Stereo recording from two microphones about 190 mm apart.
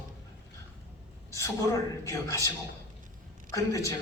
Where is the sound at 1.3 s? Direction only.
15° left (ahead or behind).